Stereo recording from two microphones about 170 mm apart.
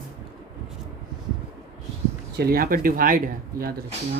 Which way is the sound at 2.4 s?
60° right (ahead or behind).